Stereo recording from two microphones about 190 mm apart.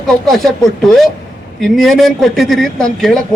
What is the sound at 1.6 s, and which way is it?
A man's voice, centre (ahead or behind).